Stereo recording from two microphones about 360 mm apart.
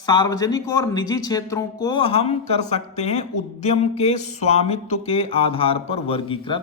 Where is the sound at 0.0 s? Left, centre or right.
Centre.